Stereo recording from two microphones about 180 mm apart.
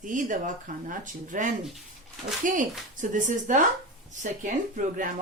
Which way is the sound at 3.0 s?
45° right (ahead or behind).